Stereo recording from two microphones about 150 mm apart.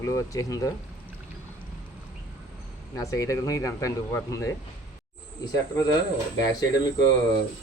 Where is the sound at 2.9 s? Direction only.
20° left (ahead or behind).